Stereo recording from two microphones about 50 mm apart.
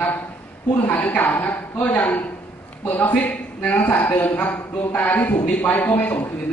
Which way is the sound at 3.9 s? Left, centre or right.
Left.